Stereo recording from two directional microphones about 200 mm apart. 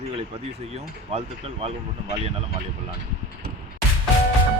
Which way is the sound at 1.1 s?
30° right (ahead or behind).